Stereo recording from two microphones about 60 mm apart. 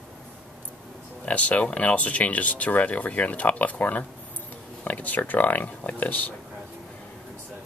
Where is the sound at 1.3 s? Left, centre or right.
Left.